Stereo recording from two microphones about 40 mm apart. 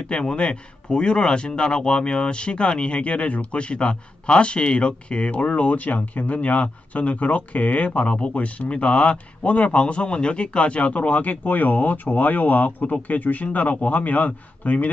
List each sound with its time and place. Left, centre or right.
0.1 s speech: left